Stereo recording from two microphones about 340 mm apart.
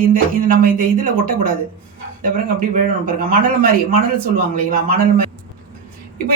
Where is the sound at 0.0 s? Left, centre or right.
Right.